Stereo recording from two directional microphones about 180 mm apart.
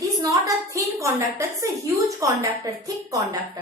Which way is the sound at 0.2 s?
20° right (ahead or behind).